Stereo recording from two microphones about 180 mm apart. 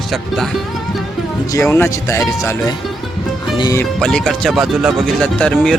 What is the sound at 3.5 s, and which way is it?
Speech, 20° left (ahead or behind).